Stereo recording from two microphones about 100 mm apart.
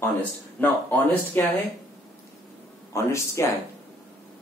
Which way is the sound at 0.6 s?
20° left (ahead or behind).